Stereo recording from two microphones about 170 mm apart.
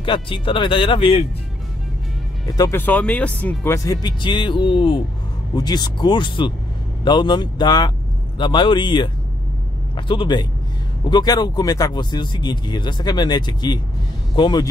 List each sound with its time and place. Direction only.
0.0 s speech: 30° left (ahead or behind)
2.4 s a man's voice: 20° left (ahead or behind)